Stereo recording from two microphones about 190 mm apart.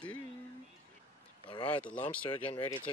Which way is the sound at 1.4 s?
25° left (ahead or behind).